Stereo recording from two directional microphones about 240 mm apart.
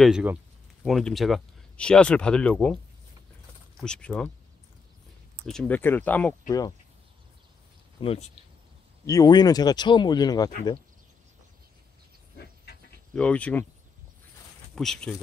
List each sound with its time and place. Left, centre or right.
0.0 s speech: centre
3.8 s speech: centre
5.5 s speech: centre
8.0 s speech: left
9.0 s speech: centre
13.1 s speech: centre
14.8 s speech: centre